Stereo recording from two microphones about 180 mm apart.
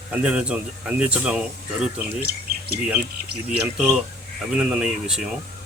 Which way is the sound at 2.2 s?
60° right (ahead or behind).